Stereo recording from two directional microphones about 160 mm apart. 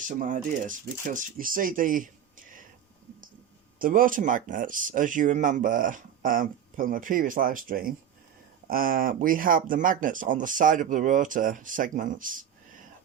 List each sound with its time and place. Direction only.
0.0 s speech: 55° right (ahead or behind)
3.8 s speech: 60° right (ahead or behind)